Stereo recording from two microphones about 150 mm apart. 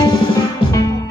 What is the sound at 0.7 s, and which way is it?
Music, 25° left (ahead or behind).